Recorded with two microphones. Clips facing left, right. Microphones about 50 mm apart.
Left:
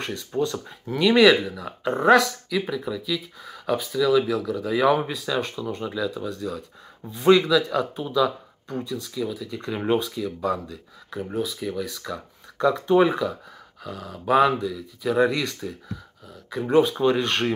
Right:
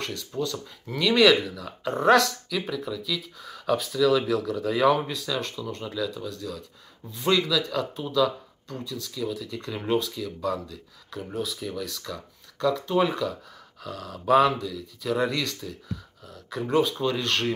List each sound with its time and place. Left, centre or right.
0.0 s speech: left
2.0 s speech: centre
4.9 s speech: centre